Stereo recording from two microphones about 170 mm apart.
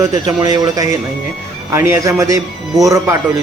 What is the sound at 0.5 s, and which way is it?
Speech, 20° right (ahead or behind).